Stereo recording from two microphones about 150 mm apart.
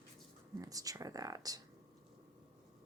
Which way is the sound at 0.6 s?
25° right (ahead or behind).